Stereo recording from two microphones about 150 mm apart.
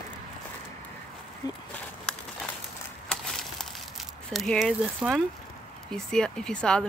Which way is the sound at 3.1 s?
Centre (ahead or behind).